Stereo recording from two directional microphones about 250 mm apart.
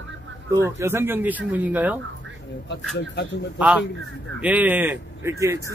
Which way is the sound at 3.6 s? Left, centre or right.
Centre.